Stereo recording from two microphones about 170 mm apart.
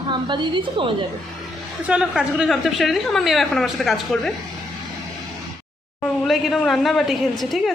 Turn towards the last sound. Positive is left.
turn(degrees=0)  # may be behind; listen again after turning